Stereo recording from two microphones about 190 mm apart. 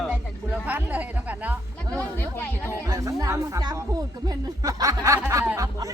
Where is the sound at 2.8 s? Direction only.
20° right (ahead or behind).